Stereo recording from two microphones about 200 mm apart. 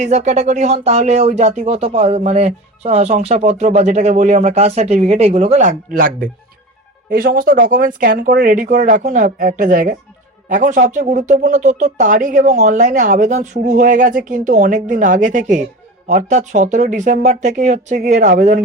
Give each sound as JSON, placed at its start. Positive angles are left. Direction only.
{"t": 0.0, "sound": "speech", "side_deg": -35}